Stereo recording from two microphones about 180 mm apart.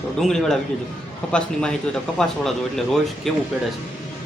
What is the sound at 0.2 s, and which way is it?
Speech, centre (ahead or behind).